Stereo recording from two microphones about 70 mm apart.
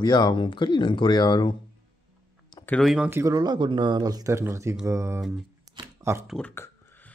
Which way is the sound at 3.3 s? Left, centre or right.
Right.